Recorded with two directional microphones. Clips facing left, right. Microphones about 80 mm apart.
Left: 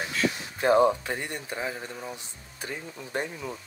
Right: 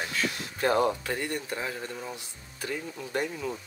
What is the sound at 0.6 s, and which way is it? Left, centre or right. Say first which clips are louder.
Speech: left 4 dB; left.